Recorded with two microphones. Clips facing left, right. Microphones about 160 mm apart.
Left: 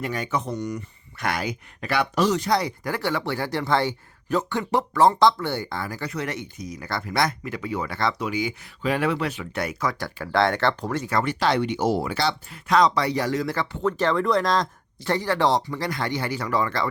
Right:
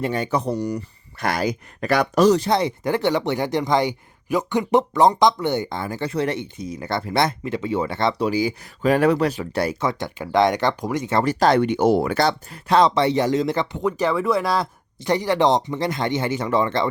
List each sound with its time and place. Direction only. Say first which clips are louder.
0.0 s speech: right 5 dB; 30° right (ahead or behind)
2.5 s speech: right 4 dB; 25° right (ahead or behind)
11.1 s speech: right 6 dB; 40° right (ahead or behind)
12.6 s speech: right 3 dB; 30° right (ahead or behind)